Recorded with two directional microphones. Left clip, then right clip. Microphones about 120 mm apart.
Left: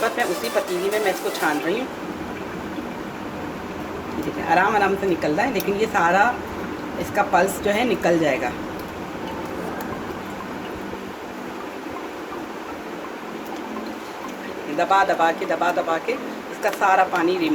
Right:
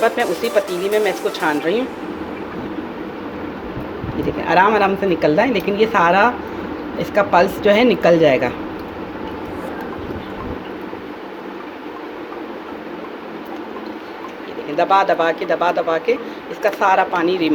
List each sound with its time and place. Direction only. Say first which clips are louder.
1.0 s speech: right 3 dB; 65° right (ahead or behind)
4.4 s speech: right 4 dB; 60° right (ahead or behind)
14.8 s speech: right 3 dB; 60° right (ahead or behind)